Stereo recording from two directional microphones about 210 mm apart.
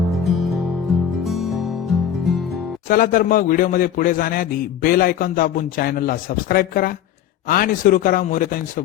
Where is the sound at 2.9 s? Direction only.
40° left (ahead or behind).